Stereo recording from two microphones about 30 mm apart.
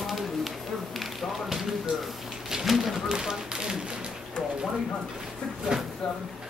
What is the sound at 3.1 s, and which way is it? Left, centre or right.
Speech, right.